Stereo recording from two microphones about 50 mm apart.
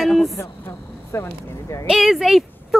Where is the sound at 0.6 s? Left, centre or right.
Left.